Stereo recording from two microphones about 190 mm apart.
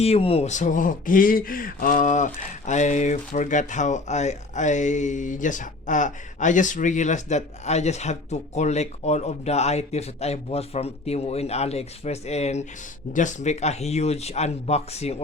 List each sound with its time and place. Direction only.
0.0 s speech: 30° left (ahead or behind)